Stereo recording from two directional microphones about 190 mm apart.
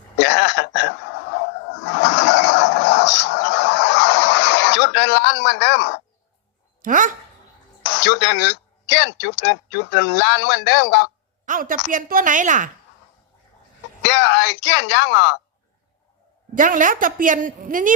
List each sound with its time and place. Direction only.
0.2 s a sound: 70° left (ahead or behind)
2.0 s a sound: 70° left (ahead or behind)
6.8 s a woman's voice: 45° right (ahead or behind)
7.9 s speech: 70° left (ahead or behind)
11.4 s a woman's voice: 45° right (ahead or behind)
14.0 s speech: 70° left (ahead or behind)
16.6 s a woman's voice: 45° right (ahead or behind)